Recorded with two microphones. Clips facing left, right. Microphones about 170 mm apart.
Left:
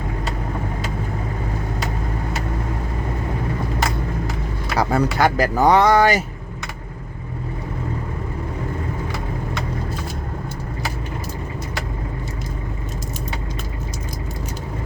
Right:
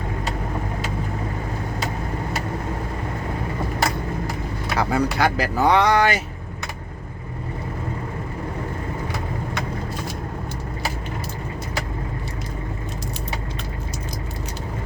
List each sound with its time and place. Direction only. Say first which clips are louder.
4.8 s speech: left 3 dB; 45° left (ahead or behind)